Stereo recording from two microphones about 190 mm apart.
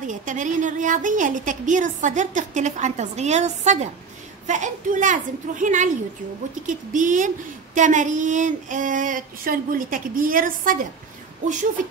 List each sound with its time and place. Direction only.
0.0 s a woman's voice: 40° right (ahead or behind)